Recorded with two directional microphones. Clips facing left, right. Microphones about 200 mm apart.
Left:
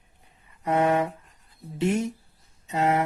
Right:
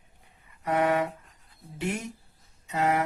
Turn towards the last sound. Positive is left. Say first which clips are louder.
# left 2 dB
turn(degrees=25)  # may be behind; listen again after turning